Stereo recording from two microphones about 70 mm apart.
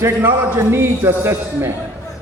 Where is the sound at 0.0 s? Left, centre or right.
Right.